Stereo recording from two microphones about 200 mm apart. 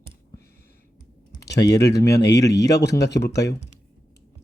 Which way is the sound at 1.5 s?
15° left (ahead or behind).